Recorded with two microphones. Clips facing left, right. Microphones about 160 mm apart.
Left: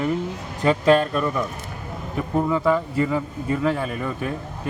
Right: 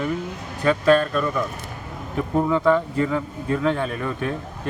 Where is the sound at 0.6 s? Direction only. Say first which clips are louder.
Even; 15° left (ahead or behind).